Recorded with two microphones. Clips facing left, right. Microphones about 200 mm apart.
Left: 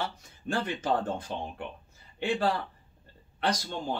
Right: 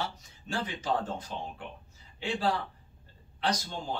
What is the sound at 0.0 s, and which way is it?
A man's voice, 55° left (ahead or behind).